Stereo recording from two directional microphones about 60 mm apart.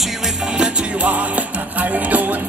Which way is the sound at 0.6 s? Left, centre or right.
Right.